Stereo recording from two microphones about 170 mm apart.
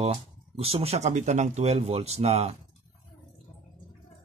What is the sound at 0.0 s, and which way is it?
A man's voice, 35° right (ahead or behind).